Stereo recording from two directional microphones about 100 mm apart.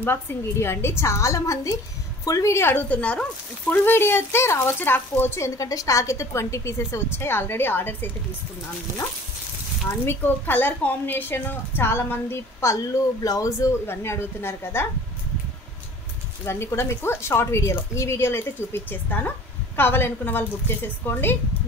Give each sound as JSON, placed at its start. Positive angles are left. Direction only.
{"t": 0.0, "sound": "a woman's voice", "side_deg": 25}
{"t": 5.6, "sound": "a woman's voice", "side_deg": 35}
{"t": 10.0, "sound": "a woman's voice", "side_deg": 20}
{"t": 16.4, "sound": "a woman's voice", "side_deg": 25}